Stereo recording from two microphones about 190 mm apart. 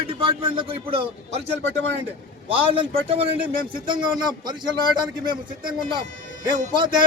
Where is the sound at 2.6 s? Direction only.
30° right (ahead or behind).